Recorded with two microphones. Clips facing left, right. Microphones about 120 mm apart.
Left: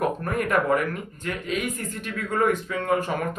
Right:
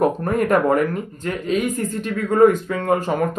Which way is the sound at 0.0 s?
35° right (ahead or behind).